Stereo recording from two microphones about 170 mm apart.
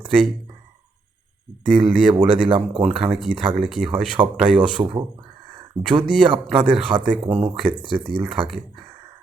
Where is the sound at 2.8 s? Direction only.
5° right (ahead or behind).